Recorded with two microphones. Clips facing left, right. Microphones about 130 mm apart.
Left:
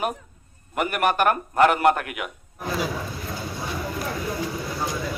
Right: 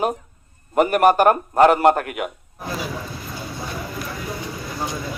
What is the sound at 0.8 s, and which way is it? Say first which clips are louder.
A man's voice: right 7 dB; 40° right (ahead or behind).